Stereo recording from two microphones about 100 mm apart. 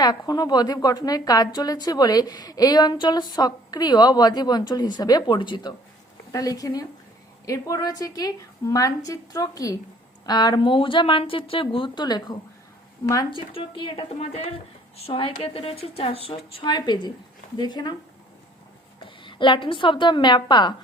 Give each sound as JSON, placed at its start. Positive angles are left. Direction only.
{"t": 0.0, "sound": "a woman's voice", "side_deg": 45}
{"t": 6.3, "sound": "a woman's voice", "side_deg": 35}
{"t": 12.0, "sound": "a woman's voice", "side_deg": 45}
{"t": 13.5, "sound": "a woman's voice", "side_deg": 60}
{"t": 15.0, "sound": "a woman's voice", "side_deg": 70}
{"t": 16.6, "sound": "a woman's voice", "side_deg": 45}
{"t": 19.0, "sound": "a woman's voice", "side_deg": 55}